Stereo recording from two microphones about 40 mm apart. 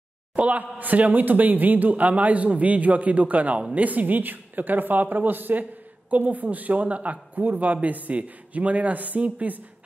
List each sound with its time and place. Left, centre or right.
0.4 s speech: right